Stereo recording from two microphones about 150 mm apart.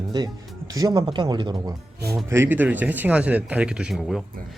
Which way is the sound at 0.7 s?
25° right (ahead or behind).